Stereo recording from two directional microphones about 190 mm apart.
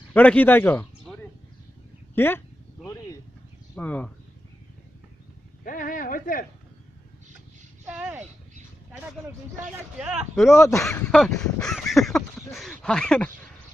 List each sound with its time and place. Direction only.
0.1 s speech: 10° left (ahead or behind)
1.0 s a sound: 5° left (ahead or behind)
2.1 s speech: 10° left (ahead or behind)
2.8 s a sound: 15° left (ahead or behind)
3.8 s speech: 5° left (ahead or behind)
5.6 s speech: 45° left (ahead or behind)
7.9 s a sound: 5° right (ahead or behind)
10.0 s speech: 5° right (ahead or behind)
10.6 s speech: 15° left (ahead or behind)